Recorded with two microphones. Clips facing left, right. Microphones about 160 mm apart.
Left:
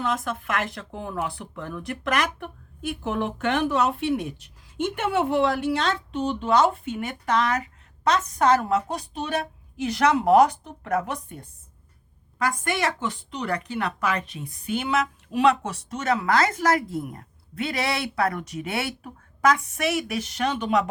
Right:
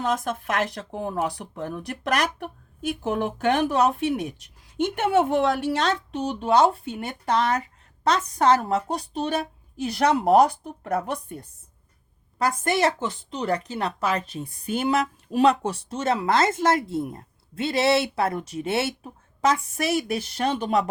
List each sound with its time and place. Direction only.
0.0 s speech: 45° right (ahead or behind)
5.1 s a woman's voice: 50° right (ahead or behind)